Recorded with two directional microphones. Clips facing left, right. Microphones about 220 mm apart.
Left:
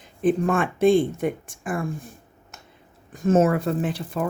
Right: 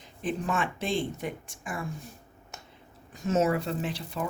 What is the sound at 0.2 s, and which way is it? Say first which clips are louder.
Speech: left 9 dB; 55° left (ahead or behind).